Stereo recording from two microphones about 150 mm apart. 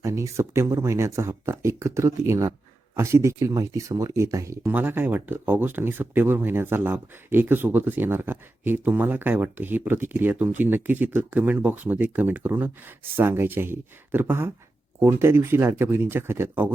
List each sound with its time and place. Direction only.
0.0 s speech: 20° right (ahead or behind)